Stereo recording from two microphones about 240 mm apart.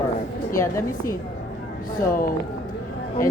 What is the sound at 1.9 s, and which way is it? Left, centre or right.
Speech, left.